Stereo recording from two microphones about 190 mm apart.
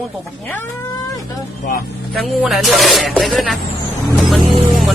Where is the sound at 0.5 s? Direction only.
15° left (ahead or behind).